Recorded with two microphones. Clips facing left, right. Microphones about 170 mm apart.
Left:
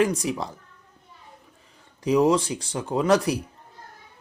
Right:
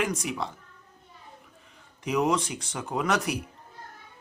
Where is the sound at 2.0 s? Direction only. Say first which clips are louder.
Left 6 dB; 30° left (ahead or behind).